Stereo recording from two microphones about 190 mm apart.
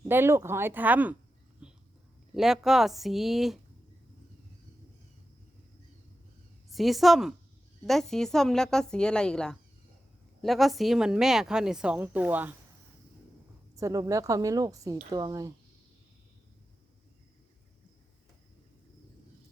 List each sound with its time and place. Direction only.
0.1 s a woman's voice: 10° right (ahead or behind)
1.6 s a sound: 5° right (ahead or behind)
2.3 s a woman's voice: centre (ahead or behind)
6.7 s a woman's voice: centre (ahead or behind)
13.7 s a woman's voice: 15° right (ahead or behind)